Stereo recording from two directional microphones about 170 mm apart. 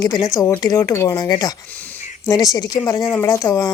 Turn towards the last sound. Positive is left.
turn(degrees=20)  # may be behind; listen again after turning